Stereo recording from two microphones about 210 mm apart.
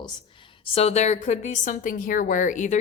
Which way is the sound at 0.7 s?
30° left (ahead or behind).